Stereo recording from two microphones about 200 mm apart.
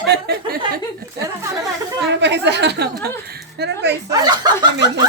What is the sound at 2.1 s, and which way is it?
A woman's voice, 60° right (ahead or behind).